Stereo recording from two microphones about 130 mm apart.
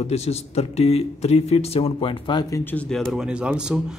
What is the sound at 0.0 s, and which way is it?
Speech, 55° left (ahead or behind).